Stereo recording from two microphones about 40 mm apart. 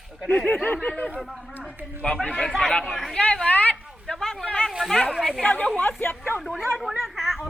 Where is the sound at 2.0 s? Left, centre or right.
Left.